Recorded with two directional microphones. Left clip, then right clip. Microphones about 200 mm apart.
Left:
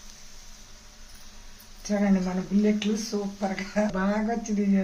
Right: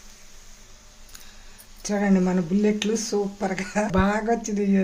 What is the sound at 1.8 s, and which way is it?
Speech, 55° right (ahead or behind).